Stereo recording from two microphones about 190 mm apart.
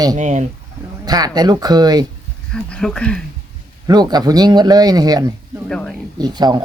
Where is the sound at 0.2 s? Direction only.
40° right (ahead or behind).